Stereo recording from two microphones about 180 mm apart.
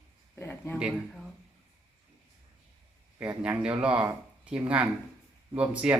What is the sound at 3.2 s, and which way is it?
Speech, 5° right (ahead or behind).